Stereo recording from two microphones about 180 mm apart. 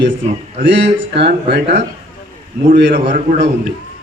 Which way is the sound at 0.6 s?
70° right (ahead or behind).